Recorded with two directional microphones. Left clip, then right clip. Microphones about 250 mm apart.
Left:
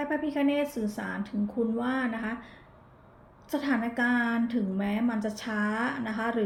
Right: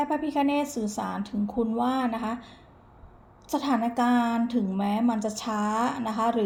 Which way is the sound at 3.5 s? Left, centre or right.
Right.